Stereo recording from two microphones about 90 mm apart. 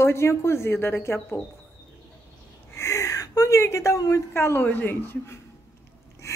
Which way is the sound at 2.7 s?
35° left (ahead or behind).